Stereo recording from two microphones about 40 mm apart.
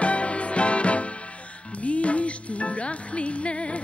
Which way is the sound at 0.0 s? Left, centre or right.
Left.